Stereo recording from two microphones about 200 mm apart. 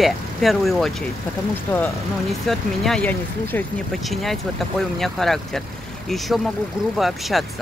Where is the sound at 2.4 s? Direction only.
Centre (ahead or behind).